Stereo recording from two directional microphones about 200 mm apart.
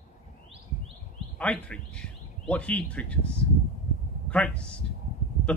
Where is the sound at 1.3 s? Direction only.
5° left (ahead or behind).